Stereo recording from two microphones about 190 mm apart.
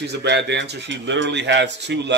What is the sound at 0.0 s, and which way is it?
Speech, 65° right (ahead or behind).